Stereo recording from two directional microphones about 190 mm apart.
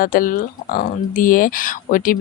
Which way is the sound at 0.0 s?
45° left (ahead or behind).